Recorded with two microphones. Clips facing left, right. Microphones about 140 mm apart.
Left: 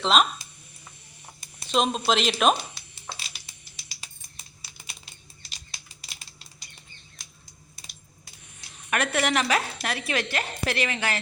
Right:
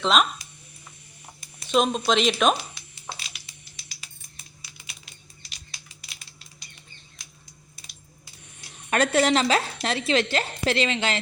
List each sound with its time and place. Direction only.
0.0 s speech: centre (ahead or behind)
1.6 s speech: centre (ahead or behind)
8.9 s a woman's voice: 30° right (ahead or behind)